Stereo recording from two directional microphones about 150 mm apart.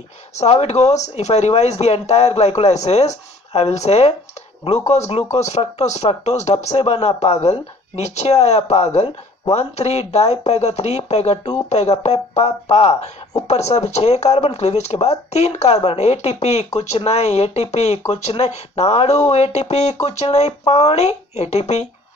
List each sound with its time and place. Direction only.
0.4 s speech: 45° left (ahead or behind)